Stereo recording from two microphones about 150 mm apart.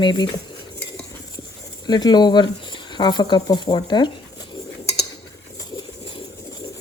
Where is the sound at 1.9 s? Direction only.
30° left (ahead or behind).